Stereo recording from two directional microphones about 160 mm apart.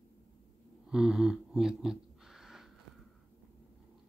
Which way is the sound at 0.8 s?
5° right (ahead or behind).